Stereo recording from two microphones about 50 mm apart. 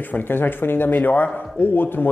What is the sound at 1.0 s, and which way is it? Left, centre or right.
Speech, left.